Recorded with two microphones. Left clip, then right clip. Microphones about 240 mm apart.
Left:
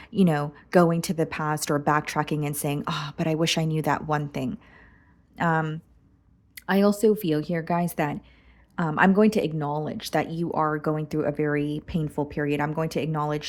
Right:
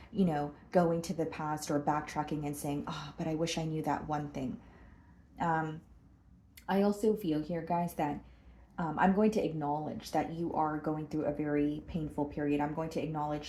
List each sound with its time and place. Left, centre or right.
0.0 s a woman's voice: left